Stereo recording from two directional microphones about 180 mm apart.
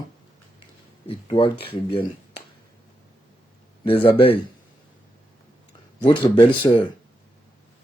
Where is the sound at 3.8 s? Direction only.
30° left (ahead or behind).